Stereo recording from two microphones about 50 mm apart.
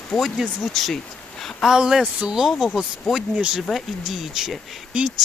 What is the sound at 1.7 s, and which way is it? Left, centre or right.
Speech, centre.